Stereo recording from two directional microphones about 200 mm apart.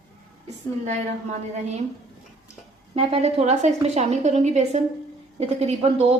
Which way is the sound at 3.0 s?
30° right (ahead or behind).